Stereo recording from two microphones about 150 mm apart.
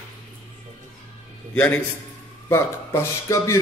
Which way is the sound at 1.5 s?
10° left (ahead or behind).